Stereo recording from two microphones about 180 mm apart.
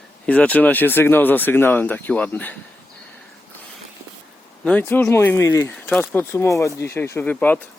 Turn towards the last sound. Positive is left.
turn(degrees=10)  # may be behind; listen again after turning